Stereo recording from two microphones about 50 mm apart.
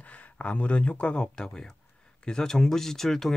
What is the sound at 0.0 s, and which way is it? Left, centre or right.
A man's voice, left.